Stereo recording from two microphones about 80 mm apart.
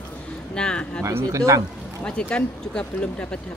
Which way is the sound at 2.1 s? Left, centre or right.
Centre.